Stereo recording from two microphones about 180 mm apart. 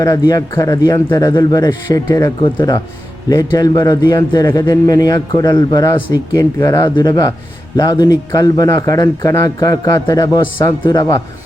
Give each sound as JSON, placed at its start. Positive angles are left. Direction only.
{"t": 0.0, "sound": "a man's voice", "side_deg": 20}